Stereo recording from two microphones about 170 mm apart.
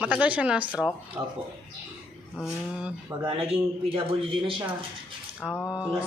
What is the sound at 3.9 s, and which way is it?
Speech, 30° right (ahead or behind).